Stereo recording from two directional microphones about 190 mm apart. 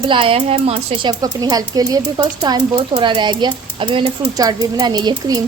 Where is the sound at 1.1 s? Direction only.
20° right (ahead or behind).